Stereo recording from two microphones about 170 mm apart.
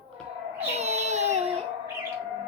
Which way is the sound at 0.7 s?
40° right (ahead or behind).